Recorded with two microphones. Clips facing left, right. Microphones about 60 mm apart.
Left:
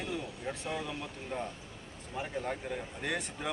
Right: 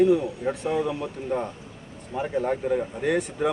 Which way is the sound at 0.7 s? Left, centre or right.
Centre.